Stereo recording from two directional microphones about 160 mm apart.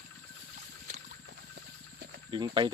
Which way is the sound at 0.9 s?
75° right (ahead or behind).